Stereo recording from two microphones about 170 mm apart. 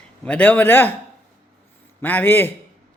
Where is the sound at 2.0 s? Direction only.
10° left (ahead or behind).